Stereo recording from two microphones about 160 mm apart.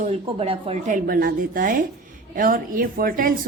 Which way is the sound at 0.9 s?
60° right (ahead or behind).